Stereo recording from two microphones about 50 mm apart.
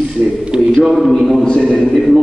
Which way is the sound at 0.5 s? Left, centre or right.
Centre.